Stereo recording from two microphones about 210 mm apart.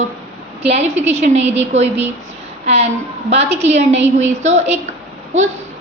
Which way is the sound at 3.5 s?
30° right (ahead or behind).